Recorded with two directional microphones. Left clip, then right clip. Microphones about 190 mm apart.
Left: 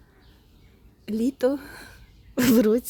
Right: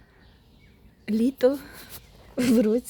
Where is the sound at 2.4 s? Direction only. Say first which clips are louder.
Left 2 dB; 35° left (ahead or behind).